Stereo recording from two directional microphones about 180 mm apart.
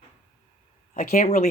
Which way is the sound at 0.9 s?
40° left (ahead or behind).